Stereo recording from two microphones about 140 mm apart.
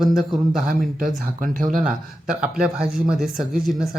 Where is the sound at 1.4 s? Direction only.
75° right (ahead or behind).